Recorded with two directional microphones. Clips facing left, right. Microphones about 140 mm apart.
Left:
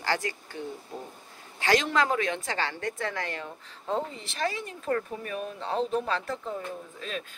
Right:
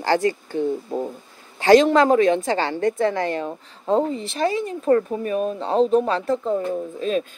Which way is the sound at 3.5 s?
40° right (ahead or behind).